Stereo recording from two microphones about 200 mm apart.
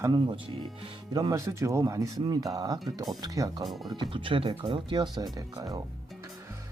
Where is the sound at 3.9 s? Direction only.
25° right (ahead or behind).